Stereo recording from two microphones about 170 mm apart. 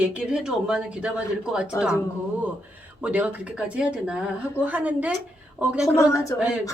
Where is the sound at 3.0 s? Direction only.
10° right (ahead or behind).